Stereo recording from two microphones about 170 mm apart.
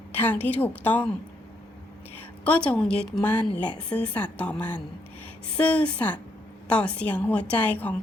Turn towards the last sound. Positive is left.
turn(degrees=10)  # may be behind; listen again after turning